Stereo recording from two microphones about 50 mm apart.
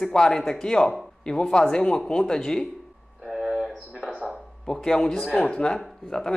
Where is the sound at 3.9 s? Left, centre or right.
Centre.